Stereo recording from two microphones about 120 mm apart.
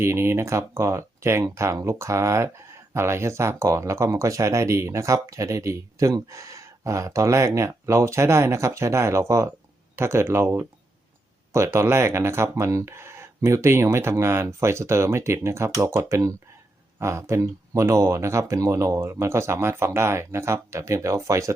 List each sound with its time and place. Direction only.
0.0 s speech: 20° right (ahead or behind)